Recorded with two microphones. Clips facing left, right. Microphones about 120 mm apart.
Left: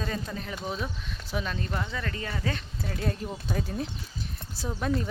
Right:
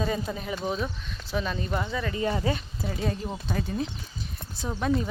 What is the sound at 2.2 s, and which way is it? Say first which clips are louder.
Speech: right 9 dB; 25° right (ahead or behind).